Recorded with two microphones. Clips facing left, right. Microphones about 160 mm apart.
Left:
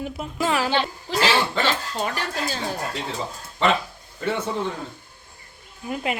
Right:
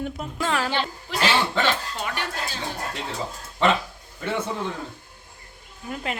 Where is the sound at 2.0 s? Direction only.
35° left (ahead or behind).